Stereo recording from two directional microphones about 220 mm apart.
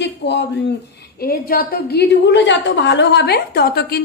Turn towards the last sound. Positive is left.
turn(degrees=45)  # may be behind; listen again after turning